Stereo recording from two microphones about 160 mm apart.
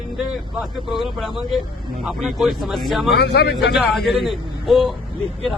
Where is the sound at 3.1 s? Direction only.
90° left.